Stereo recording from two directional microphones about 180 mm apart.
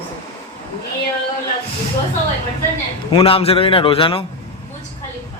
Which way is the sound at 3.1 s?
30° left (ahead or behind).